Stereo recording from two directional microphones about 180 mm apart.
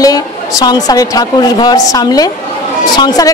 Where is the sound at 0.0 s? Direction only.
20° left (ahead or behind).